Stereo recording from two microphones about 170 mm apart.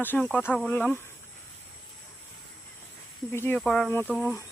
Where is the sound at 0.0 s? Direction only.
10° left (ahead or behind).